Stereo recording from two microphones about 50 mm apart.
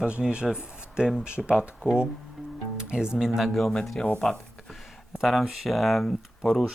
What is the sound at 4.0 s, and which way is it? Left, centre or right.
Speech, centre.